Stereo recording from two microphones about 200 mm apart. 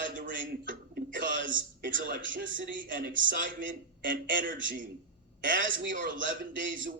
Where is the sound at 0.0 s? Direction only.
40° right (ahead or behind).